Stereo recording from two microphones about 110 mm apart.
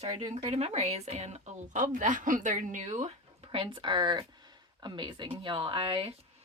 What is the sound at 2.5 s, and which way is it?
Speech, 90° right.